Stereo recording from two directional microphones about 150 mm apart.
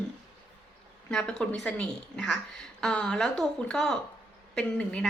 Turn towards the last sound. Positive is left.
turn(degrees=5)  # may be behind; listen again after turning